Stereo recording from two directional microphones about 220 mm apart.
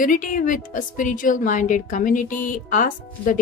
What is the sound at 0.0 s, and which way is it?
A woman's voice, 35° left (ahead or behind).